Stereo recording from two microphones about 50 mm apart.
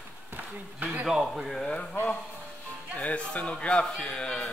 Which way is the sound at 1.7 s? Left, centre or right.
Centre.